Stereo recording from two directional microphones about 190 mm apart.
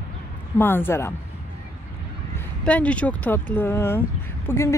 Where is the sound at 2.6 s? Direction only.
5° left (ahead or behind).